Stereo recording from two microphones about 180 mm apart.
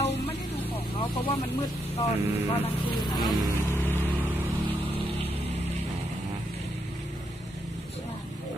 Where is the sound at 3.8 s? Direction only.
10° left (ahead or behind).